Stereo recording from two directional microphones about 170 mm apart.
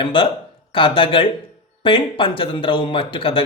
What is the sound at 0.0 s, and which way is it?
Speech, 30° left (ahead or behind).